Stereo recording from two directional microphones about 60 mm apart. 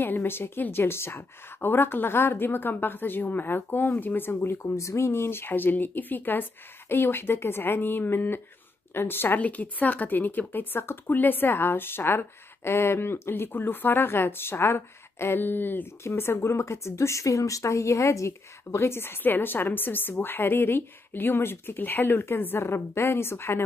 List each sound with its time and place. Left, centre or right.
0.0 s a woman's voice: left
4.7 s a woman's voice: left
9.4 s a woman's voice: left
13.5 s a woman's voice: left